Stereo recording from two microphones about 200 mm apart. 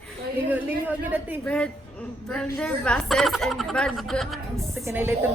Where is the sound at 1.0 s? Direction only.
10° right (ahead or behind).